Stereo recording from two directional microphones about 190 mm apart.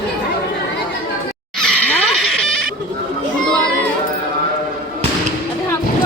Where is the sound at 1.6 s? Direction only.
Centre (ahead or behind).